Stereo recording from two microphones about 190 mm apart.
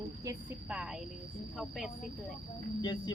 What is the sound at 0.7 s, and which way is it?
Speech, 5° right (ahead or behind).